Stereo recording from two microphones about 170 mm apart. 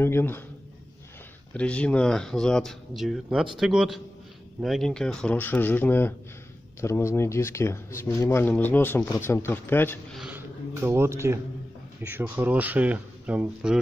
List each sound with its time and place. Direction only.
0.0 s speech: 15° left (ahead or behind)
1.5 s speech: 5° left (ahead or behind)
10.1 s speech: 5° right (ahead or behind)
10.8 s speech: 15° right (ahead or behind)